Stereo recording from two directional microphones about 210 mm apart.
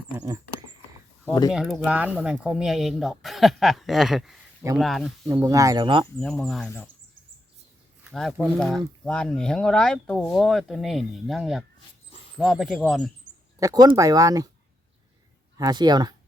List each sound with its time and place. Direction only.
1.2 s speech: 15° left (ahead or behind)
1.5 s speech: centre (ahead or behind)
5.3 s speech: 15° right (ahead or behind)
6.1 s speech: 5° left (ahead or behind)
8.1 s speech: centre (ahead or behind)
13.6 s speech: 15° right (ahead or behind)
15.5 s speech: 20° right (ahead or behind)